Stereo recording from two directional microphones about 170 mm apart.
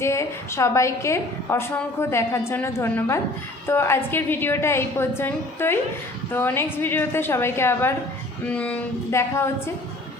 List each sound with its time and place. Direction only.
0.0 s a woman's voice: 15° left (ahead or behind)